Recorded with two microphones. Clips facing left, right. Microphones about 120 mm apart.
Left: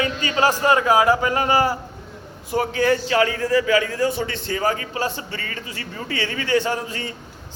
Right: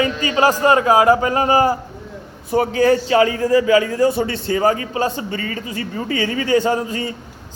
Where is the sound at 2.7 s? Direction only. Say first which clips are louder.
Right 4 dB; 40° right (ahead or behind).